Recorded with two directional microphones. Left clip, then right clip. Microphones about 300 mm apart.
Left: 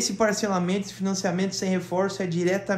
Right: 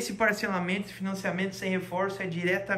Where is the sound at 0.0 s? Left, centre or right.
Centre.